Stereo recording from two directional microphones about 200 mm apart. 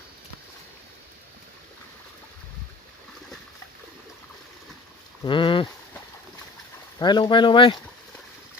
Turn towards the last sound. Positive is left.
turn(degrees=25)  # may be behind; listen again after turning